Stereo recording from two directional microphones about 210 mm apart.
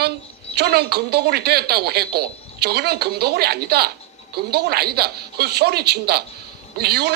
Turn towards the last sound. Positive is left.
turn(degrees=-50)  # may be behind; listen again after turning